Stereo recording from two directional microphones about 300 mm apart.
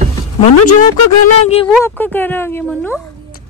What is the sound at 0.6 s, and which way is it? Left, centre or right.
Speech, left.